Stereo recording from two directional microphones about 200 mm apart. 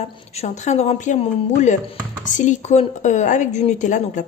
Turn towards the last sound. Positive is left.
turn(degrees=40)  # may be behind; listen again after turning